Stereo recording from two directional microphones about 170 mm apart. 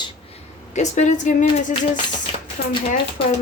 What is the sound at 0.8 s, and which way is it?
Speech, 45° left (ahead or behind).